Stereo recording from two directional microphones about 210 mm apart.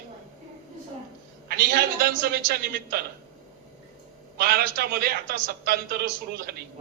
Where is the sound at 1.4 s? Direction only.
50° right (ahead or behind).